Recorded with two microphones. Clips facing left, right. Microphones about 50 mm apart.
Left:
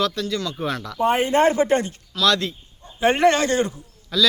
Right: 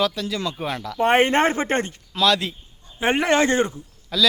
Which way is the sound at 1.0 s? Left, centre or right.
Right.